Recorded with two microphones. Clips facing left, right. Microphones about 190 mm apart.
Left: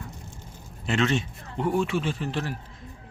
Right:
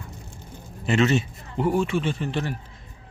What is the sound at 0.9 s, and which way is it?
A man's voice, 5° right (ahead or behind).